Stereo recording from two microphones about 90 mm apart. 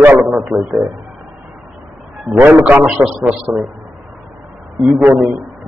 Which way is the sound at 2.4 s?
15° right (ahead or behind).